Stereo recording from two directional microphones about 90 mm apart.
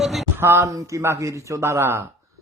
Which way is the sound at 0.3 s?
30° right (ahead or behind).